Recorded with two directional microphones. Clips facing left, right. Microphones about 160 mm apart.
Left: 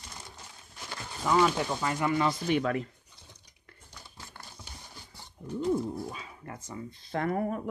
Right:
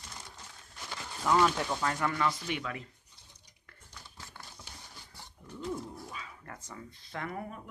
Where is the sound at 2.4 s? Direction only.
45° left (ahead or behind).